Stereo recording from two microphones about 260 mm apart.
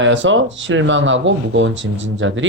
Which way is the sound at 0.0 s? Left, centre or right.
Right.